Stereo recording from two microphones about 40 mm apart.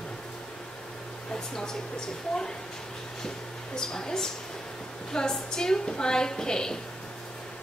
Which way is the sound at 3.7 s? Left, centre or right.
Centre.